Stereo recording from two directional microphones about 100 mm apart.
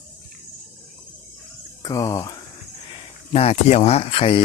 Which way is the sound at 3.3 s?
90° left.